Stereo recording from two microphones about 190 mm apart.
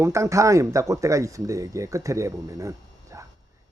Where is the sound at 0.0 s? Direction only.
15° right (ahead or behind).